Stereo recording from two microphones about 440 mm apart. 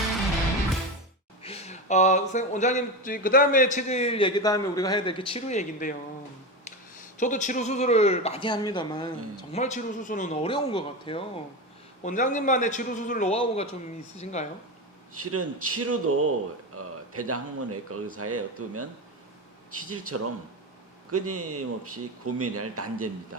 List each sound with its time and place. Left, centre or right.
1.4 s speech: centre
15.1 s a man's voice: right